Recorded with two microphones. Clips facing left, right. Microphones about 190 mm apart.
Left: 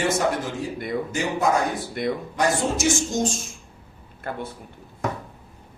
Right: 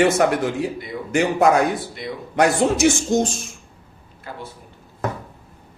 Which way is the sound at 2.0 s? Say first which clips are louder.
Left 6 dB; 55° left (ahead or behind).